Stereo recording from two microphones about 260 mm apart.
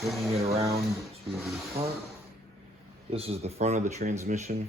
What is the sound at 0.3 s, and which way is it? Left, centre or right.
Speech, right.